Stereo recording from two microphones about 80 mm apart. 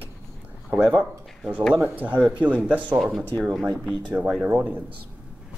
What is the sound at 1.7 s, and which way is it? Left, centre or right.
Speech, right.